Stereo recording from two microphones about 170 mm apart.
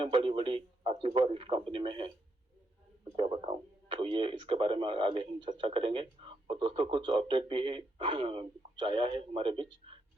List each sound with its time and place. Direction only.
0.0 s speech: 30° right (ahead or behind)
3.2 s speech: 30° right (ahead or behind)